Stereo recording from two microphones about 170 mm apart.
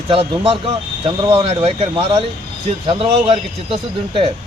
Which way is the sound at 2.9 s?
35° right (ahead or behind).